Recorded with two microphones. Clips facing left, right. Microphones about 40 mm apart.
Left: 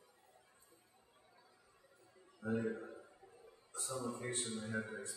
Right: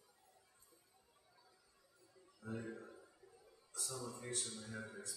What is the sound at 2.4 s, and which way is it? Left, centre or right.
A man's voice, left.